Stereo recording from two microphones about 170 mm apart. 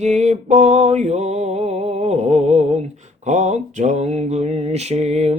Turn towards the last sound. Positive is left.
turn(degrees=-40)  # may be behind; listen again after turning